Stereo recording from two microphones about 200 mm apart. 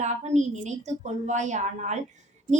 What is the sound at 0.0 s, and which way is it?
A woman's voice, 35° right (ahead or behind).